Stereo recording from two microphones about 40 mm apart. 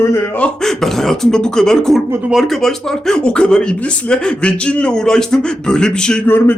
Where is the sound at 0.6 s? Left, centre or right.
Centre.